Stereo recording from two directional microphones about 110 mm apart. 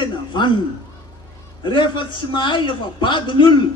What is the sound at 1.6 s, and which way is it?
A man's voice, 45° left (ahead or behind).